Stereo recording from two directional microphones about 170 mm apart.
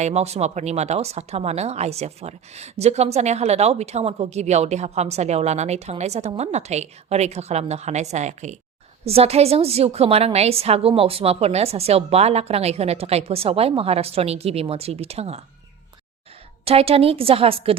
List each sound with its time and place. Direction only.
0.0 s speech: 40° right (ahead or behind)
16.6 s speech: 35° right (ahead or behind)